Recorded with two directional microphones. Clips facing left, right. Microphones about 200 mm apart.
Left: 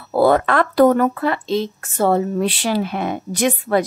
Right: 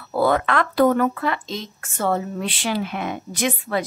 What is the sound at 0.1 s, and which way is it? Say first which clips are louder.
A woman's voice: left 5 dB; 40° left (ahead or behind).